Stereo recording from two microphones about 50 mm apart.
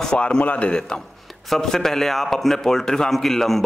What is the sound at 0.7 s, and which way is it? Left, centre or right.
A man's voice, centre.